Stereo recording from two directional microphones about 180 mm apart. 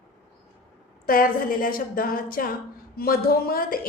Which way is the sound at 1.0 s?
50° left (ahead or behind).